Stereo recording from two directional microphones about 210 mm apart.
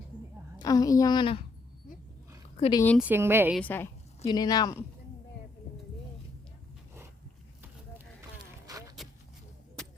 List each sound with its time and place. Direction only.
0.6 s speech: 15° left (ahead or behind)
2.6 s speech: 25° left (ahead or behind)
3.0 s a woman's voice: 10° right (ahead or behind)
3.6 s a woman's voice: 10° left (ahead or behind)
8.6 s a sound: 15° right (ahead or behind)